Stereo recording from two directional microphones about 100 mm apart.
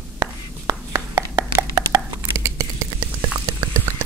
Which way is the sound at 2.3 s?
35° right (ahead or behind).